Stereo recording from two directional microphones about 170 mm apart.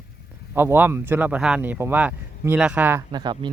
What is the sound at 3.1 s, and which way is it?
Speech, 25° right (ahead or behind).